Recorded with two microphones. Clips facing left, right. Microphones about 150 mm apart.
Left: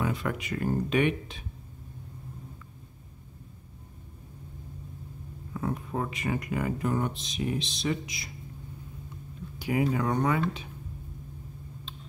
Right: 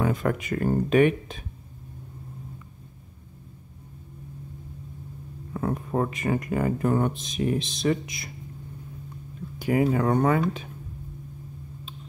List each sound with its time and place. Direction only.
0.0 s speech: 45° right (ahead or behind)
5.5 s speech: 50° right (ahead or behind)
9.6 s speech: 50° right (ahead or behind)